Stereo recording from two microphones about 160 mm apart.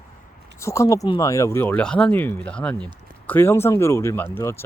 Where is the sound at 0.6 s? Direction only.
20° left (ahead or behind).